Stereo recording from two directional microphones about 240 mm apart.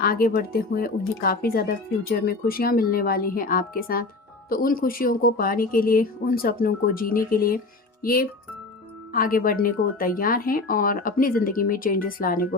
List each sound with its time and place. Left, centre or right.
0.0 s speech: left